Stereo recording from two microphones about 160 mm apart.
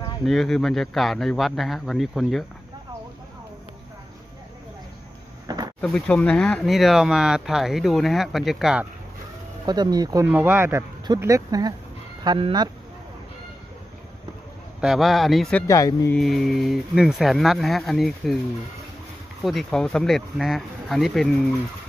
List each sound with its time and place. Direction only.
0.2 s speech: centre (ahead or behind)
5.8 s speech: 5° left (ahead or behind)
9.7 s speech: 25° right (ahead or behind)
10.2 s speech: 15° right (ahead or behind); by 12.6 s 30° right (ahead or behind)
14.8 s speech: centre (ahead or behind)
15.6 s speech: 20° left (ahead or behind)
16.2 s speech: centre (ahead or behind)
19.4 s speech: centre (ahead or behind)